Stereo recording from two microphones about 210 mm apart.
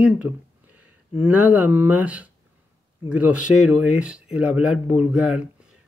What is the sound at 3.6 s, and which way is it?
Speech, 90° left.